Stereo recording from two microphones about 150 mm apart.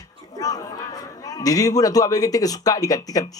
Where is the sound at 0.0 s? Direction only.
25° left (ahead or behind).